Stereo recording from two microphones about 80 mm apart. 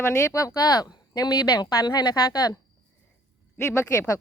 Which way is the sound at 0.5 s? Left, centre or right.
Left.